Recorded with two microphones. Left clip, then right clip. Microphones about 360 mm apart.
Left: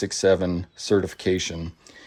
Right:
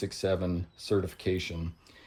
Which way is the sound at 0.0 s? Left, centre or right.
Left.